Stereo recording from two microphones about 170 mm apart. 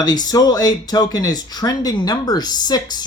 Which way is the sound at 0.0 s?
20° left (ahead or behind).